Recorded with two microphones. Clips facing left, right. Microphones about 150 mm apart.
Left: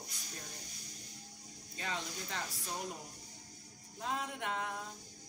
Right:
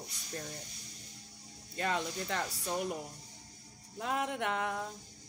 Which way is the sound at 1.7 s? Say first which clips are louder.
Right 7 dB; 60° right (ahead or behind).